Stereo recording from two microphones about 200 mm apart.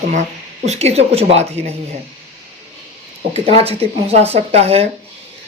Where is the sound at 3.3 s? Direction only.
30° right (ahead or behind).